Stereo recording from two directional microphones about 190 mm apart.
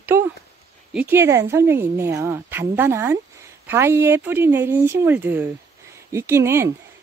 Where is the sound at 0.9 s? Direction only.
10° right (ahead or behind).